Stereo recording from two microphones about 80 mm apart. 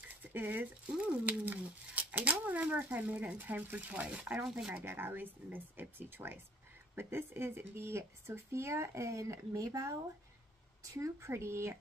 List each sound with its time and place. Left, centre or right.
0.2 s speech: right
4.5 s speech: centre
4.8 s speech: right